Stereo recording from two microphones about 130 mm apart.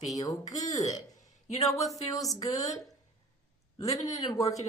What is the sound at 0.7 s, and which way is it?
Speech, 60° left (ahead or behind).